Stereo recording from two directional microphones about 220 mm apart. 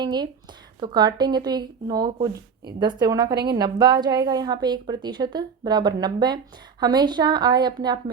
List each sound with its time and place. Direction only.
0.0 s speech: 20° right (ahead or behind)